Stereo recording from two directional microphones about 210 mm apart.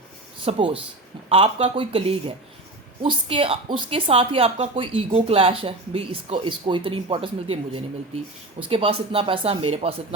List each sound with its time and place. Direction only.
0.4 s a woman's voice: 25° right (ahead or behind)